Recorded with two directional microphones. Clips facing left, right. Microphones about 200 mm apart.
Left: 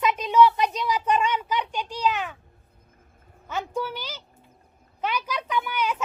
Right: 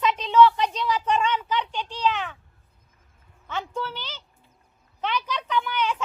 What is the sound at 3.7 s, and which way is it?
A woman's voice, 10° left (ahead or behind).